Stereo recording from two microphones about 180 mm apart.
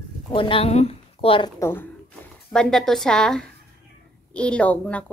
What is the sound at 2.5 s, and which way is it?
A woman's voice, 5° left (ahead or behind).